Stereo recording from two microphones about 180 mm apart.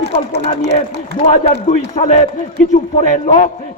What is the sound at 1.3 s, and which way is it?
A man's voice, 40° left (ahead or behind).